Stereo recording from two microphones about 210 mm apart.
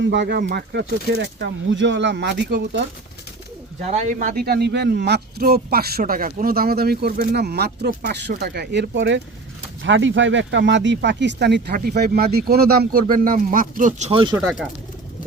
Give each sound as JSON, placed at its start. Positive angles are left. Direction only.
{"t": 0.0, "sound": "speech", "side_deg": -55}
{"t": 3.8, "sound": "speech", "side_deg": -35}